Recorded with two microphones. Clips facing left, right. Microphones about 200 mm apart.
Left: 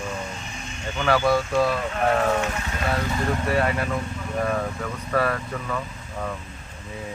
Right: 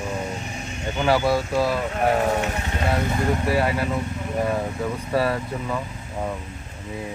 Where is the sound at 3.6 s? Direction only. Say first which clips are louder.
Right 1 dB; 20° right (ahead or behind).